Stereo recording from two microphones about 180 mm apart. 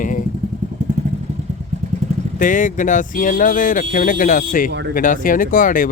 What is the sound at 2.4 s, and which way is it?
Speech, 45° left (ahead or behind).